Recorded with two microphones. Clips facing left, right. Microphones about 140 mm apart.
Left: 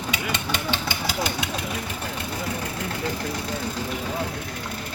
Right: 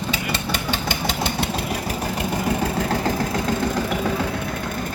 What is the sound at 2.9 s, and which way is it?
Vehicle, 90° right.